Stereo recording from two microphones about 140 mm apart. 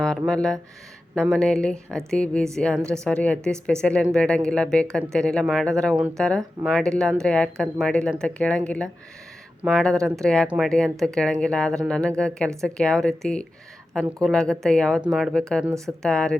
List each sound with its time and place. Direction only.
0.0 s speech: 5° left (ahead or behind)
10.4 s speech: 5° right (ahead or behind)
10.7 s speech: 5° left (ahead or behind)